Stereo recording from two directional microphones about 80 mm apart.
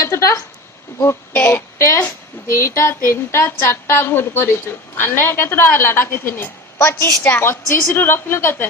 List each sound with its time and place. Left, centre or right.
0.0 s a sound: left
1.3 s a woman's voice: centre
2.0 s a woman's voice: left